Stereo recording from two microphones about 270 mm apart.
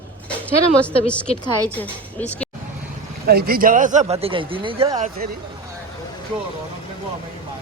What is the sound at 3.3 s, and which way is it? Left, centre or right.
Speech, right.